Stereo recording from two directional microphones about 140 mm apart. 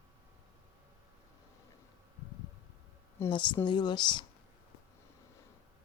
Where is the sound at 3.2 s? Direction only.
35° left (ahead or behind).